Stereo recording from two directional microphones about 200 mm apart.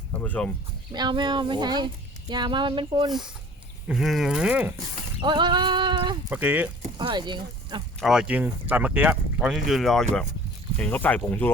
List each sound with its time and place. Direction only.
0.2 s speech: 5° left (ahead or behind)
0.9 s speech: 20° right (ahead or behind)
3.8 s speech: centre (ahead or behind)
5.2 s sheep: 25° right (ahead or behind)
6.3 s speech: 10° right (ahead or behind)
6.9 s speech: 25° right (ahead or behind)
8.0 s speech: 5° right (ahead or behind)